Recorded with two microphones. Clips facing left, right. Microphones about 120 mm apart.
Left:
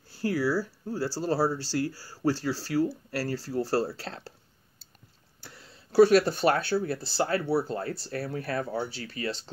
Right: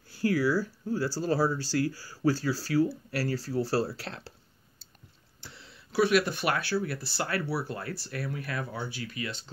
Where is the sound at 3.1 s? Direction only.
40° left (ahead or behind).